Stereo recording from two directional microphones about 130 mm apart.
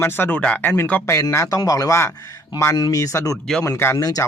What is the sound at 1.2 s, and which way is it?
Speech, 25° left (ahead or behind).